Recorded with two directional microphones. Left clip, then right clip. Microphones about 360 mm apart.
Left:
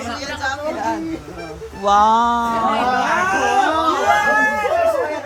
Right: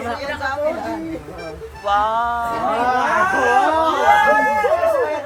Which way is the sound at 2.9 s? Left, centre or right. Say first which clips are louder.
Right 1 dB; centre.